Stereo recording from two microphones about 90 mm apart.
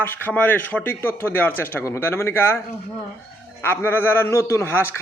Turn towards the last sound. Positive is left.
turn(degrees=30)  # may be behind; listen again after turning